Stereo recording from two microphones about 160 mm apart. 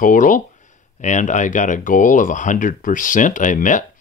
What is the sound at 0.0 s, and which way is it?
Speech, 55° left (ahead or behind).